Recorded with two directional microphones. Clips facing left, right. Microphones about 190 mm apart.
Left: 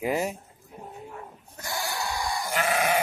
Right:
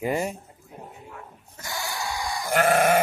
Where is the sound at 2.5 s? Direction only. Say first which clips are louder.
Right 7 dB; 55° right (ahead or behind).